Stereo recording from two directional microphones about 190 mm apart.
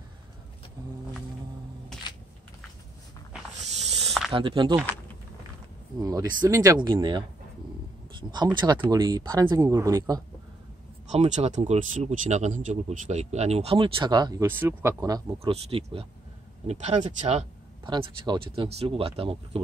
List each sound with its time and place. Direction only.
4.3 s speech: 25° right (ahead or behind)
6.0 s speech: 15° right (ahead or behind)
11.1 s speech: 35° right (ahead or behind); by 15.2 s 20° right (ahead or behind)
15.3 s speech: 30° right (ahead or behind)